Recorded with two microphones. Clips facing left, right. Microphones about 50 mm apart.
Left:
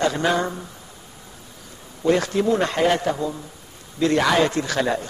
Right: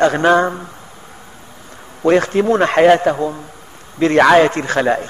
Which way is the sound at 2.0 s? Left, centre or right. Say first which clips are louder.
Right 6 dB; right.